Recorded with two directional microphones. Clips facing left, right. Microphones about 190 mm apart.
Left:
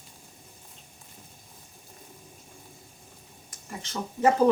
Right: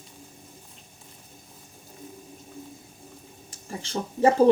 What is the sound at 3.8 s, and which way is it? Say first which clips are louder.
Speech: right 3 dB; 30° right (ahead or behind).